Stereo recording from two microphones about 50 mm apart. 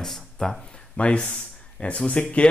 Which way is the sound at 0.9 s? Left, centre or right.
Left.